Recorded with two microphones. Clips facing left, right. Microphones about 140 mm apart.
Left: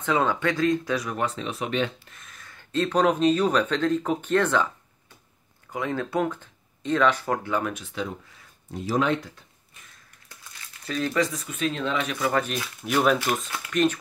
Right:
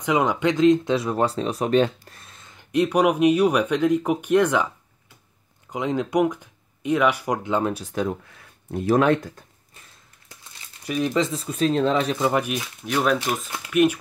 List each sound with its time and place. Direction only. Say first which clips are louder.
0.0 s speech: right 3 dB; 15° right (ahead or behind)
5.7 s speech: right 4 dB; 20° right (ahead or behind)
7.7 s speech: right 6 dB; 45° right (ahead or behind)
8.6 s speech: right 6 dB; 55° right (ahead or behind)
10.9 s speech: right 3 dB; 20° right (ahead or behind)
12.8 s speech: even; centre (ahead or behind)
13.7 s speech: right 4 dB; 10° right (ahead or behind)